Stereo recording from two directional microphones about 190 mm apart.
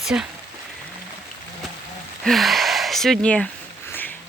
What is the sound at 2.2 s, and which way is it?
Speech, centre (ahead or behind).